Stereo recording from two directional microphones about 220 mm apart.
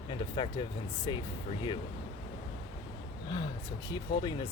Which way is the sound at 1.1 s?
20° left (ahead or behind).